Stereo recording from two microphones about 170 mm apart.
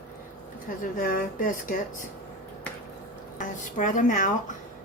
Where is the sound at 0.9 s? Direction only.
55° left (ahead or behind).